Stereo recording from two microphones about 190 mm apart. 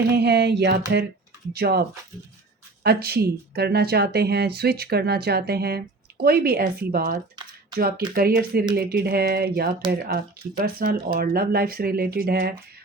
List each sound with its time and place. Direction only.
0.2 s speech: 60° right (ahead or behind)
2.8 s speech: 55° right (ahead or behind)